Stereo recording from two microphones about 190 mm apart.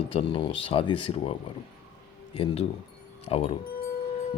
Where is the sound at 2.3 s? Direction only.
30° left (ahead or behind).